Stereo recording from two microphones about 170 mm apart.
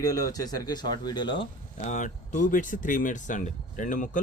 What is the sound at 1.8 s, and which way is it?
Speech, 45° left (ahead or behind).